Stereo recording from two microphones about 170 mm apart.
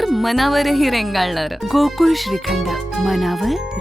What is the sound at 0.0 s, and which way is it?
A woman's voice, centre (ahead or behind).